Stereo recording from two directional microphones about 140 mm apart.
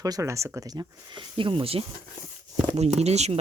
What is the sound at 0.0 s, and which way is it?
Speech, 25° right (ahead or behind).